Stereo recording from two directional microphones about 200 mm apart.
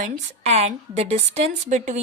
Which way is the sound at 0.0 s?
30° right (ahead or behind).